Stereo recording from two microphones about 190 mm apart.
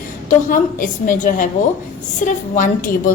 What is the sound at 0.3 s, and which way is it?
Speech, 45° left (ahead or behind).